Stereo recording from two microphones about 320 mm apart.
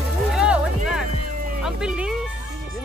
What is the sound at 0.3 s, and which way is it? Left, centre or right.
Music, centre.